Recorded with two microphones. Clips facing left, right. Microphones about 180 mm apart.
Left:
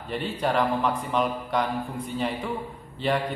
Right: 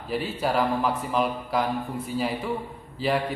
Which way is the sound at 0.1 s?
5° right (ahead or behind).